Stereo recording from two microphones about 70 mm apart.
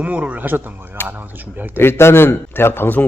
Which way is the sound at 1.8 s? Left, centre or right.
Left.